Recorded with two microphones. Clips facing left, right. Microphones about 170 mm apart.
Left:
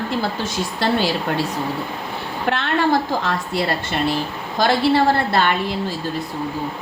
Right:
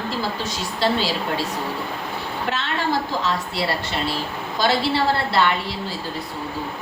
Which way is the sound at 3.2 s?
55° left (ahead or behind).